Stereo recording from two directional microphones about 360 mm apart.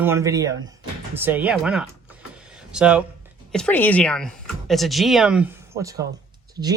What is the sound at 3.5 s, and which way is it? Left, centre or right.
Speech, centre.